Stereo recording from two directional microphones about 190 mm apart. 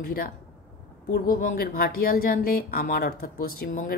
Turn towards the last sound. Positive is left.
turn(degrees=50)  # may be behind; listen again after turning